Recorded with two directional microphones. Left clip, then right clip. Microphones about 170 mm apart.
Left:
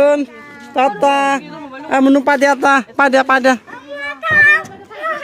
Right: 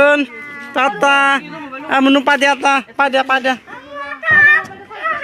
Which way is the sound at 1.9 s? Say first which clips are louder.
Even; 15° left (ahead or behind).